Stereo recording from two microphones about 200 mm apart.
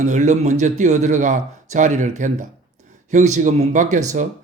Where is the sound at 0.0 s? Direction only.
35° right (ahead or behind).